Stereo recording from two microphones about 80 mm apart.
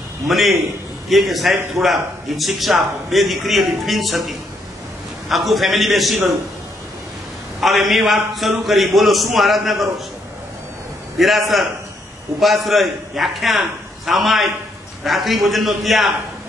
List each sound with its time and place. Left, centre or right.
0.3 s a man's voice: centre
1.5 s speech: right
1.8 s a man's voice: centre
7.6 s a man's voice: centre
11.1 s a man's voice: centre